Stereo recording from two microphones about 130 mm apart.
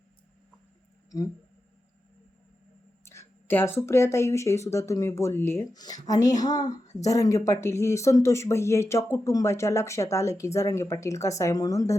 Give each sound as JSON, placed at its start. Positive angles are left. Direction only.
{"t": 3.0, "sound": "speech", "side_deg": 20}
{"t": 5.7, "sound": "speech", "side_deg": 30}